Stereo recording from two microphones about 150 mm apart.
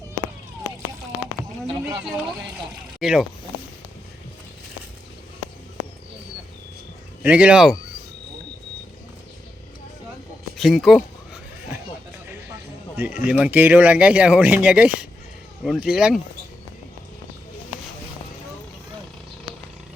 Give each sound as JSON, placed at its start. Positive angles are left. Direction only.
{"t": 3.0, "sound": "speech", "side_deg": 0}
{"t": 7.2, "sound": "speech", "side_deg": -10}
{"t": 10.6, "sound": "speech", "side_deg": 0}
{"t": 13.0, "sound": "speech", "side_deg": -10}